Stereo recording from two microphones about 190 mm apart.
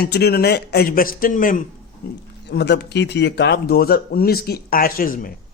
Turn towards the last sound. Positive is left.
turn(degrees=50)  # may be behind; listen again after turning